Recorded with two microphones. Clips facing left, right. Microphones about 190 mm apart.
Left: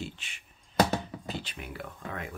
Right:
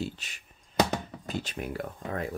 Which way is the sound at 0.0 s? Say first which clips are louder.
Right 5 dB; 40° right (ahead or behind).